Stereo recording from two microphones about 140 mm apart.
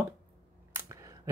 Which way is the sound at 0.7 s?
25° right (ahead or behind).